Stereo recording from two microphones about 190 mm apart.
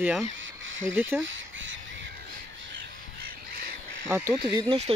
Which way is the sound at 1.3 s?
85° right.